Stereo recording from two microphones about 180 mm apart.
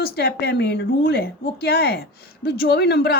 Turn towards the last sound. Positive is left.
turn(degrees=60)  # may be behind; listen again after turning